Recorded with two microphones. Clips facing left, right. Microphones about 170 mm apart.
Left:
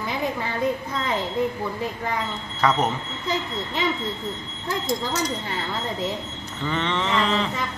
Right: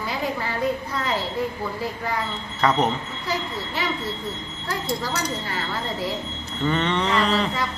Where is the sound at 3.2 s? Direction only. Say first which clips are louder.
Left 2 dB; 20° left (ahead or behind).